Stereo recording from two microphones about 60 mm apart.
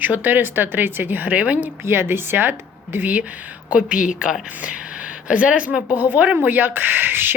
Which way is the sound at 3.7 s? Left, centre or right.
Centre.